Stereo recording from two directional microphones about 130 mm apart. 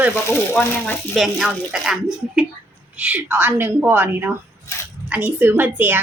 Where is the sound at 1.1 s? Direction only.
Centre (ahead or behind).